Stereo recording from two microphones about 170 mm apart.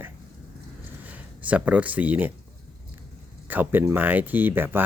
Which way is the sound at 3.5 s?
10° right (ahead or behind).